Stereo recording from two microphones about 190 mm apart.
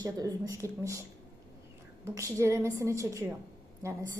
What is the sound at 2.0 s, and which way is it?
A woman's voice, 15° right (ahead or behind).